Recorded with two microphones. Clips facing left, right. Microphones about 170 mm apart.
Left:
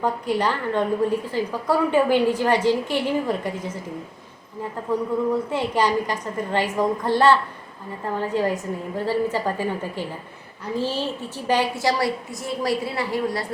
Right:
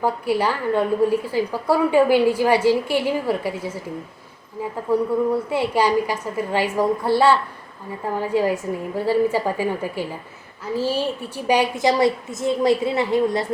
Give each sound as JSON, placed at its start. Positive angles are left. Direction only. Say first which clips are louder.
{"t": 0.0, "sound": "a woman's voice", "louder": "right 2 dB", "side_deg": -10}
{"t": 4.9, "sound": "a woman's voice", "louder": "right 3 dB", "side_deg": -10}